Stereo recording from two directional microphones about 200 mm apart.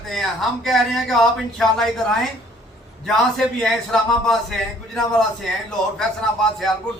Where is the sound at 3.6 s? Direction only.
Centre (ahead or behind).